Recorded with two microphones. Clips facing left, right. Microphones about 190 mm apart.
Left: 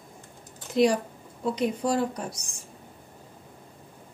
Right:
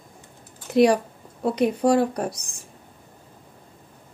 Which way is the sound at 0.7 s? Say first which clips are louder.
Right 5 dB; 65° right (ahead or behind).